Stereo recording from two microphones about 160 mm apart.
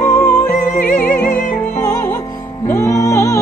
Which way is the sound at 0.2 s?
10° left (ahead or behind).